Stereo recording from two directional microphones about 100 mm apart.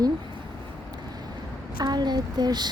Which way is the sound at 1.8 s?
45° right (ahead or behind).